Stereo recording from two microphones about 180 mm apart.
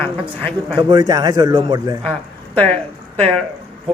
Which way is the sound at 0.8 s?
20° right (ahead or behind).